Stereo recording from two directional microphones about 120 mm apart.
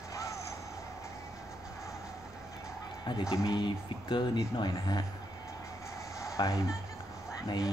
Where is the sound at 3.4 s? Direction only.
40° left (ahead or behind).